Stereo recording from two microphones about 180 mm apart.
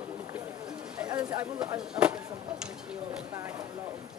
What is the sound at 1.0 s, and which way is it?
Bird, 20° right (ahead or behind).